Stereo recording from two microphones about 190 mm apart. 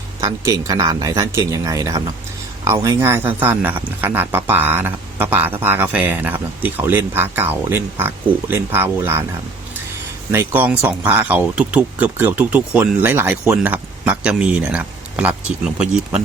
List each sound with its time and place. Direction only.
0.2 s speech: 20° right (ahead or behind)
10.3 s speech: 10° right (ahead or behind)